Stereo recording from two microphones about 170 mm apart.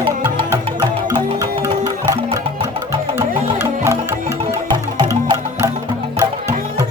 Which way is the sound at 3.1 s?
15° right (ahead or behind).